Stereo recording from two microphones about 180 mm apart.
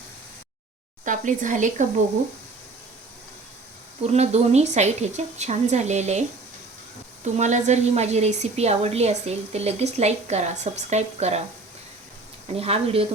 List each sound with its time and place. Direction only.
1.0 s a woman's voice: 45° right (ahead or behind)
4.0 s a woman's voice: 35° right (ahead or behind)
7.3 s a woman's voice: 40° right (ahead or behind)
12.5 s a woman's voice: 35° right (ahead or behind)